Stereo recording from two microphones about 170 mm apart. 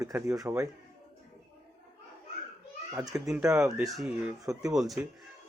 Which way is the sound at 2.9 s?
20° right (ahead or behind).